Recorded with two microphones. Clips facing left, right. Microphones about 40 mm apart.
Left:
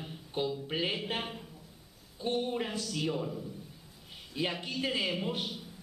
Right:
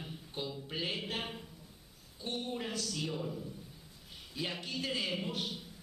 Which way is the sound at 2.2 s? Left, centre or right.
Centre.